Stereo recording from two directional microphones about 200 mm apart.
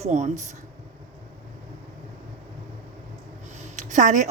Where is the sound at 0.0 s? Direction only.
35° right (ahead or behind).